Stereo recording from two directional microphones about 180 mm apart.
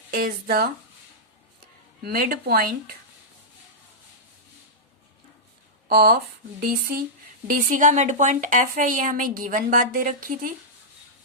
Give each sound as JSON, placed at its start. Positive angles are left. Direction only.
{"t": 0.2, "sound": "speech", "side_deg": -55}
{"t": 2.0, "sound": "speech", "side_deg": -55}
{"t": 5.9, "sound": "a woman's voice", "side_deg": -60}